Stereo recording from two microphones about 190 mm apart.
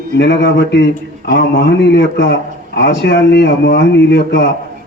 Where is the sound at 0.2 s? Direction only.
65° left (ahead or behind).